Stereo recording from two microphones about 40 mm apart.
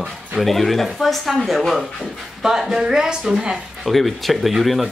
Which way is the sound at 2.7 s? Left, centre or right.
Centre.